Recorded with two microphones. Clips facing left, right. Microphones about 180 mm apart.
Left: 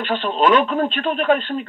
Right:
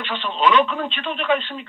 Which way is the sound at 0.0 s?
45° left (ahead or behind).